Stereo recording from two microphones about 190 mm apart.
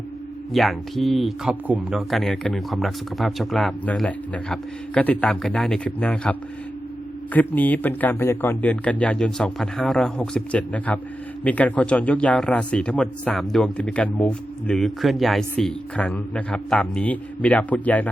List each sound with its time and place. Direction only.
0.5 s speech: centre (ahead or behind)
7.3 s speech: 10° left (ahead or behind)